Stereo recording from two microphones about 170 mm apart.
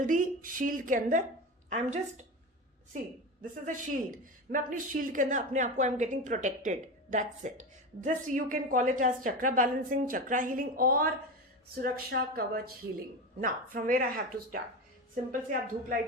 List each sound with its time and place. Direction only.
0.0 s a woman's voice: 50° right (ahead or behind)
3.7 s a woman's voice: 50° right (ahead or behind)
13.4 s a woman's voice: 50° right (ahead or behind)